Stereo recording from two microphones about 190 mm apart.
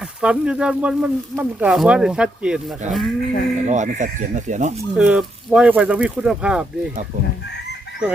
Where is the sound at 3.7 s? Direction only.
40° right (ahead or behind).